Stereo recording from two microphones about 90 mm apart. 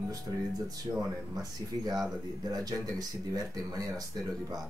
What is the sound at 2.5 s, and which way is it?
Speech, 45° right (ahead or behind).